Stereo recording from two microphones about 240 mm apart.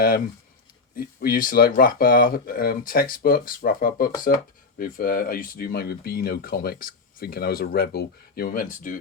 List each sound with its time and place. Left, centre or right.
0.9 s speech: left